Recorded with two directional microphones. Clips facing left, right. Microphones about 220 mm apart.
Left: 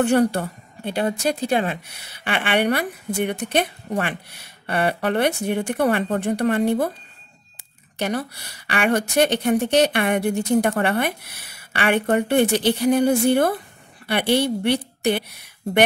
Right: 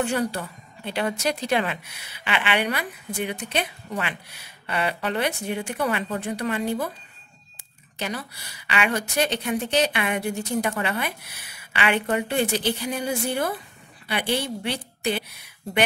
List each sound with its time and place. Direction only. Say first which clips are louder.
0.0 s a woman's voice: left 7 dB; 55° left (ahead or behind)
0.9 s speech: left 3 dB; 30° left (ahead or behind)
2.2 s a woman's voice: left 4 dB; 50° left (ahead or behind)
8.0 s speech: left 7 dB; 55° left (ahead or behind)